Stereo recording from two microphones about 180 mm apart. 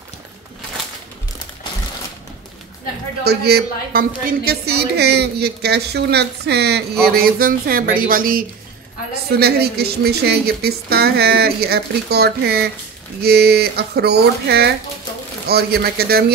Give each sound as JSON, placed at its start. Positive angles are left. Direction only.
{"t": 3.3, "sound": "a woman's voice", "side_deg": -60}